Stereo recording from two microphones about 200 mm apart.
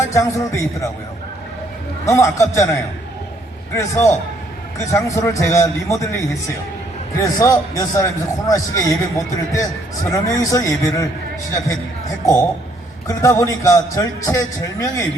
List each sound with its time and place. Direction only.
0.1 s a man's voice: 15° left (ahead or behind)
2.0 s a man's voice: 15° left (ahead or behind)
3.8 s a man's voice: 15° left (ahead or behind)
13.1 s a man's voice: 15° left (ahead or behind)